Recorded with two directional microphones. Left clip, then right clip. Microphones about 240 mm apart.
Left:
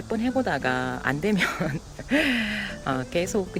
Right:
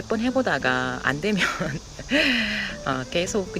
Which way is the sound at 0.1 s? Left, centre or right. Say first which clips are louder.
Right 2 dB; centre.